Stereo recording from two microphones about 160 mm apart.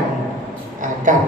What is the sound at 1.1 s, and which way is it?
Music, 55° right (ahead or behind).